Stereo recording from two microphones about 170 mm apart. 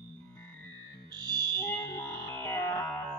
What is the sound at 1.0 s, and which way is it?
Music, 25° right (ahead or behind).